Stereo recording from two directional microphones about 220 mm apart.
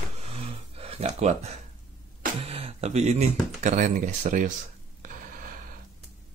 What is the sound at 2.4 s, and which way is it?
Speech, 25° right (ahead or behind).